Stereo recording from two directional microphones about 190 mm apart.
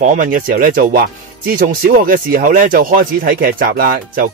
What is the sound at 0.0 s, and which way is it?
Speech, 45° right (ahead or behind).